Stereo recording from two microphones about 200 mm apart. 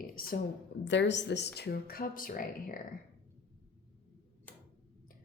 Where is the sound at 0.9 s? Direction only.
60° left (ahead or behind); by 2.7 s 45° left (ahead or behind).